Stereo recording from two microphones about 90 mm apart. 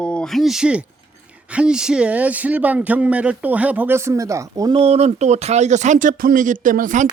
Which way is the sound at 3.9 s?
35° right (ahead or behind).